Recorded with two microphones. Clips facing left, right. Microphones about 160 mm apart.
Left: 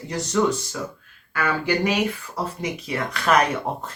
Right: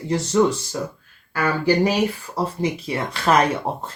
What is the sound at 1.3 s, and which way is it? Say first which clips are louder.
Speech: right 4 dB; 35° right (ahead or behind).